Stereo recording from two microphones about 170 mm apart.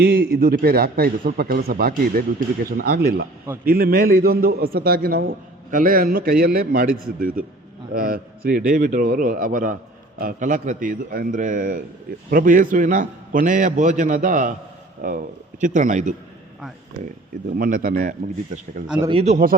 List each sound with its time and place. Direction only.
0.0 s a man's voice: 65° right (ahead or behind); by 16.1 s 45° right (ahead or behind)
17.6 s a man's voice: 55° right (ahead or behind)
19.0 s a man's voice: 35° right (ahead or behind)